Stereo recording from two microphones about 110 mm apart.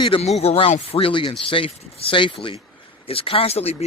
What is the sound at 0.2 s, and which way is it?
Speech, 70° left (ahead or behind).